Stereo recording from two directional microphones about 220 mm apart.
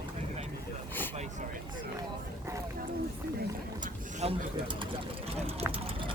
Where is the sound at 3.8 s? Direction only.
30° right (ahead or behind).